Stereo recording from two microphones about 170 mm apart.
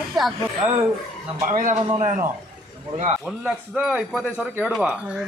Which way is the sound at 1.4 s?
50° right (ahead or behind).